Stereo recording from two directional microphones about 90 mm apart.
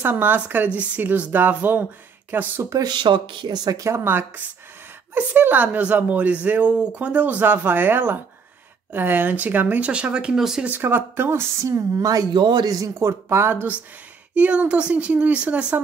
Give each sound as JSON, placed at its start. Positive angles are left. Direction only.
{"t": 0.0, "sound": "speech", "side_deg": -20}
{"t": 2.8, "sound": "speech", "side_deg": -60}
{"t": 10.7, "sound": "speech", "side_deg": -25}
{"t": 12.4, "sound": "a man's voice", "side_deg": -55}
{"t": 12.7, "sound": "speech", "side_deg": -35}